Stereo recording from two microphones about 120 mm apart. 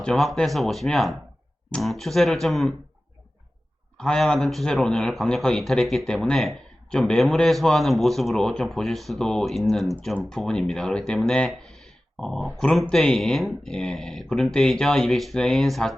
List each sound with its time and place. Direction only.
0.0 s speech: 5° left (ahead or behind)
3.9 s speech: 5° left (ahead or behind)
11.6 s a sound: centre (ahead or behind)
12.5 s speech: 5° left (ahead or behind)